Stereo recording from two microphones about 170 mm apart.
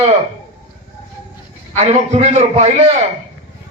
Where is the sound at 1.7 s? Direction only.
35° right (ahead or behind).